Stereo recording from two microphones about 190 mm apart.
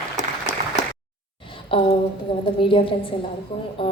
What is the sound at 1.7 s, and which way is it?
A woman's voice, 25° left (ahead or behind).